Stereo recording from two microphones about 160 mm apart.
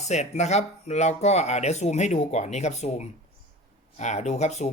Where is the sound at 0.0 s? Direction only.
45° left (ahead or behind).